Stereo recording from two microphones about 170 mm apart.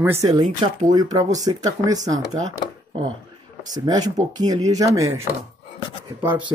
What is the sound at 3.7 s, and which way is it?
Speech, 25° right (ahead or behind).